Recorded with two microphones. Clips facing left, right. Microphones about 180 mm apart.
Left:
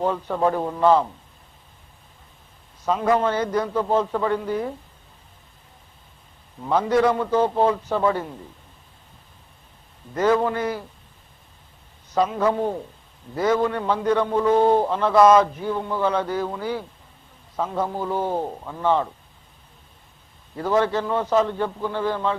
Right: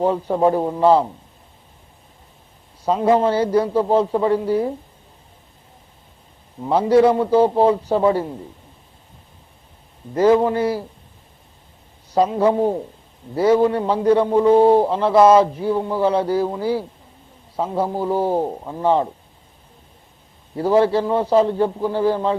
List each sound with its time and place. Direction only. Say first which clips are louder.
0.0 s a man's voice: right 5 dB; 35° right (ahead or behind)
0.4 s a man's voice: right 3 dB; 20° right (ahead or behind)
2.8 s a man's voice: right 4 dB; 30° right (ahead or behind)
6.6 s a man's voice: right 5 dB; 30° right (ahead or behind)
10.2 s a man's voice: right 5 dB; 30° right (ahead or behind)
12.1 s a man's voice: right 4 dB; 30° right (ahead or behind)
18.4 s a man's voice: right 4 dB; 25° right (ahead or behind)
20.6 s a man's voice: right 5 dB; 35° right (ahead or behind)